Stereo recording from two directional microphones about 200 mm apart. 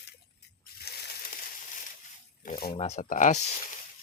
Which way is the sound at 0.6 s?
50° left (ahead or behind).